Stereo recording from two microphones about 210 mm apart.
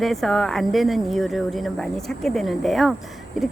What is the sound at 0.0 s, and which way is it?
Speech, centre (ahead or behind).